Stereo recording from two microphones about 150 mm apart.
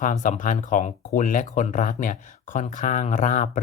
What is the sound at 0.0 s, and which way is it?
Speech, 55° left (ahead or behind).